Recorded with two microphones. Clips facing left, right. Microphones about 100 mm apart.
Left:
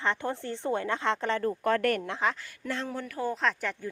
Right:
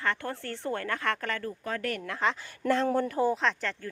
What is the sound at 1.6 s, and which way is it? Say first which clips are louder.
Speech: left 9 dB; 65° left (ahead or behind).